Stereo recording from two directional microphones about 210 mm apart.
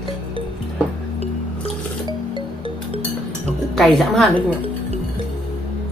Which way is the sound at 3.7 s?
Centre (ahead or behind).